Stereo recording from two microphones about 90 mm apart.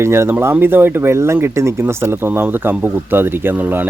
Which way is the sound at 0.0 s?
30° right (ahead or behind).